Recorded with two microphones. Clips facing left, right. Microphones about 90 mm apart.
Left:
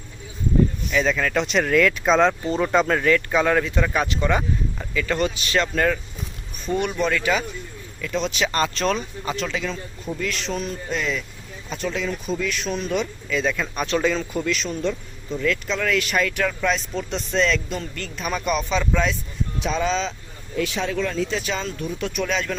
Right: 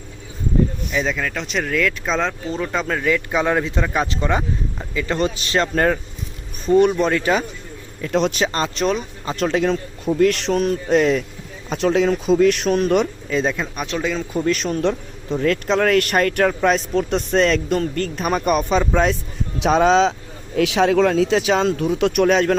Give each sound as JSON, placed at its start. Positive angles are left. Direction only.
{"t": 0.9, "sound": "speech", "side_deg": -10}
{"t": 3.1, "sound": "speech", "side_deg": -20}
{"t": 8.1, "sound": "speech", "side_deg": -60}
{"t": 8.5, "sound": "speech", "side_deg": -20}
{"t": 9.3, "sound": "a man's voice", "side_deg": -50}
{"t": 11.8, "sound": "speech", "side_deg": -70}
{"t": 13.3, "sound": "speech", "side_deg": -35}
{"t": 13.7, "sound": "speech", "side_deg": -5}
{"t": 14.4, "sound": "a man's voice", "side_deg": -50}
{"t": 19.5, "sound": "speech", "side_deg": -70}
{"t": 20.6, "sound": "speech", "side_deg": -85}